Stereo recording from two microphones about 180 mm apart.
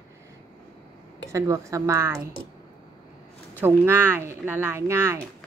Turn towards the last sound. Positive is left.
turn(degrees=-15)  # may be behind; listen again after turning